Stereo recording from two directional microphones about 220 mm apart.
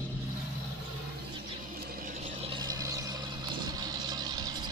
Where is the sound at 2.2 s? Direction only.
25° right (ahead or behind).